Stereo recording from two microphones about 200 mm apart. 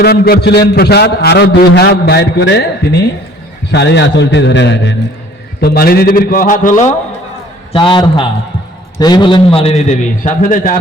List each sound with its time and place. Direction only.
0.0 s a man's voice: 50° left (ahead or behind)
5.5 s a man's voice: 50° left (ahead or behind)
7.7 s a man's voice: 25° left (ahead or behind)
10.2 s a man's voice: 40° left (ahead or behind)